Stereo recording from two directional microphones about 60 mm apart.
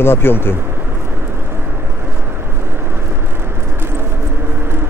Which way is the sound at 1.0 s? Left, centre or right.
Right.